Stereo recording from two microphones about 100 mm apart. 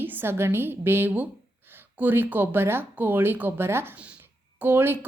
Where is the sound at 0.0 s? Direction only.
20° right (ahead or behind).